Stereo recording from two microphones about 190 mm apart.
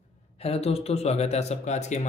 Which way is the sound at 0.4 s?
30° left (ahead or behind).